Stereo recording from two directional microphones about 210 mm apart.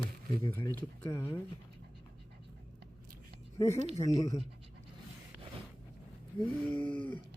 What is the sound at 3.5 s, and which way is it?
Speech, 15° left (ahead or behind).